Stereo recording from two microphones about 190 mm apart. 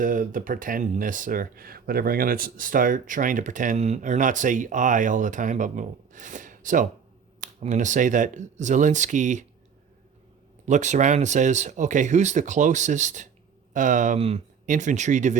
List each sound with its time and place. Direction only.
0.0 s speech: 45° right (ahead or behind)
10.7 s speech: 40° right (ahead or behind)